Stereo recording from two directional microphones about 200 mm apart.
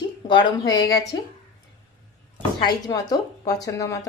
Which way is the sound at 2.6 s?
20° left (ahead or behind).